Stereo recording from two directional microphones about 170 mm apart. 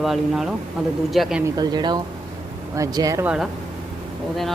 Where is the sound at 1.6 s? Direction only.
25° right (ahead or behind).